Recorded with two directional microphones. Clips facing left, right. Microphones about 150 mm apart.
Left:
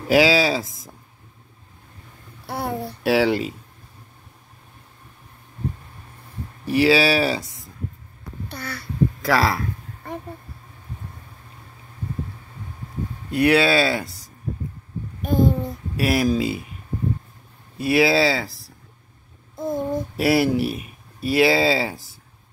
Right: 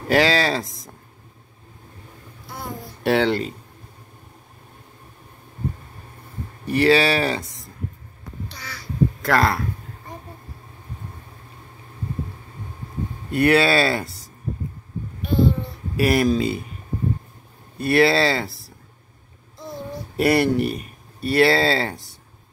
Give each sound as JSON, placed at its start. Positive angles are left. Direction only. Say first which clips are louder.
{"t": 0.1, "sound": "speech", "louder": "left 2 dB", "side_deg": 5}
{"t": 2.4, "sound": "a sound", "louder": "left 7 dB", "side_deg": 65}
{"t": 3.0, "sound": "speech", "louder": "even", "side_deg": 5}
{"t": 6.6, "sound": "speech", "louder": "even", "side_deg": 5}
{"t": 8.5, "sound": "a sound", "louder": "left 6 dB", "side_deg": 55}
{"t": 9.2, "sound": "speech", "louder": "even", "side_deg": 0}
{"t": 13.3, "sound": "speech", "louder": "even", "side_deg": 0}
{"t": 15.2, "sound": "a sound", "louder": "left 1 dB", "side_deg": 45}
{"t": 16.0, "sound": "speech", "louder": "right 2 dB", "side_deg": 0}
{"t": 17.7, "sound": "speech", "louder": "right 1 dB", "side_deg": 5}
{"t": 19.5, "sound": "a sound", "louder": "left 9 dB", "side_deg": 50}
{"t": 20.2, "sound": "speech", "louder": "right 1 dB", "side_deg": 0}